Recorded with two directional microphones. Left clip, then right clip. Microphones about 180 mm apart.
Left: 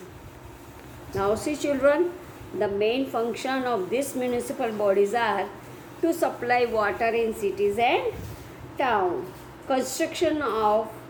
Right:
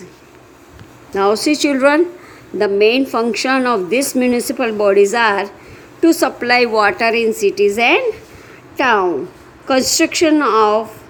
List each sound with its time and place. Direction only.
1.1 s a woman's voice: 55° right (ahead or behind)